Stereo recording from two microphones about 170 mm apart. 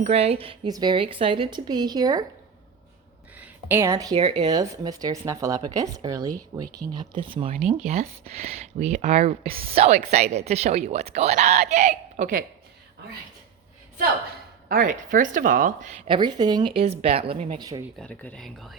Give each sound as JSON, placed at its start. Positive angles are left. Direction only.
{"t": 0.0, "sound": "speech", "side_deg": -35}
{"t": 3.3, "sound": "speech", "side_deg": -10}
{"t": 7.5, "sound": "speech", "side_deg": -45}
{"t": 14.7, "sound": "a woman's voice", "side_deg": -50}
{"t": 16.0, "sound": "speech", "side_deg": -25}
{"t": 18.0, "sound": "speech", "side_deg": 5}